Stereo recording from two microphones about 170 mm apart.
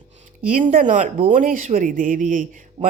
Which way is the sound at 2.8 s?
25° right (ahead or behind).